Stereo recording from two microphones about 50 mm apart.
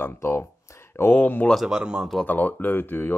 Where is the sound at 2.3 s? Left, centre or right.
Left.